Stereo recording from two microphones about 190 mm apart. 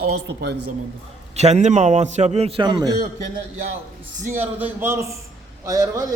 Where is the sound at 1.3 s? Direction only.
35° right (ahead or behind).